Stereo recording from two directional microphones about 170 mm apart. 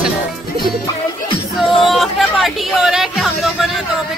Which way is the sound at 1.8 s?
Centre (ahead or behind).